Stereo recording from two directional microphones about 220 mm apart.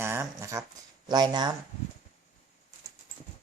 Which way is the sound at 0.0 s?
10° right (ahead or behind).